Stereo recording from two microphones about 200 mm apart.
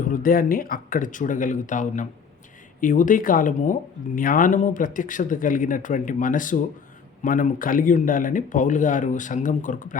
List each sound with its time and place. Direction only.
0.0 s speech: 45° left (ahead or behind)